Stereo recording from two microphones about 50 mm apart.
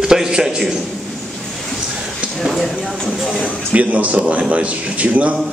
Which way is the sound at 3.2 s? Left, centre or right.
Left.